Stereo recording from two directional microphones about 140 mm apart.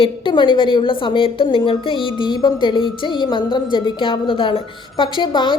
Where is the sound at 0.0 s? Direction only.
35° left (ahead or behind).